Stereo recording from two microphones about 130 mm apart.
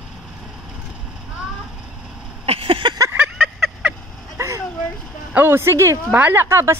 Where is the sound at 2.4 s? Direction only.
50° right (ahead or behind).